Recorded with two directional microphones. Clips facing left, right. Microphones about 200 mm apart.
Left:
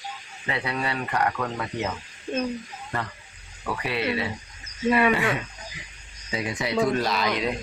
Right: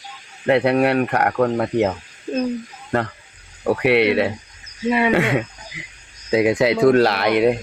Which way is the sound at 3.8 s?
75° right (ahead or behind).